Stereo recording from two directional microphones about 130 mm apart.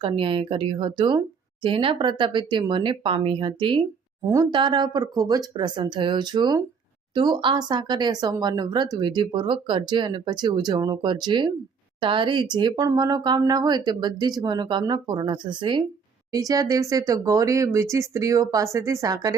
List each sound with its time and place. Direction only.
0.0 s speech: 40° right (ahead or behind)